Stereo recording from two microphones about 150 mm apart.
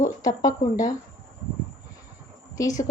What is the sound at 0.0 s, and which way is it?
Speech, 25° left (ahead or behind).